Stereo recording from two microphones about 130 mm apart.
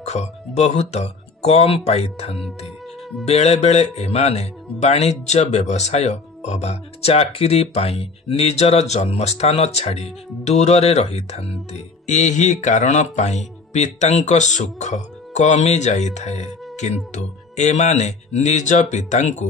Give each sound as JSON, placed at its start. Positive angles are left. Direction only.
{"t": 0.0, "sound": "speech", "side_deg": 60}